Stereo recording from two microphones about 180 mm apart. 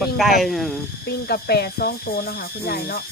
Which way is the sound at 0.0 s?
Centre (ahead or behind).